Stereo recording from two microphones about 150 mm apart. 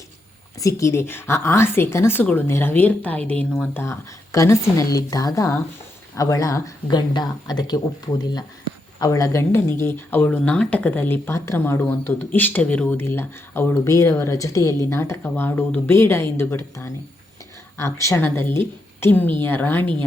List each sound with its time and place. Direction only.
0.6 s speech: 20° left (ahead or behind)
3.8 s speech: 20° left (ahead or behind)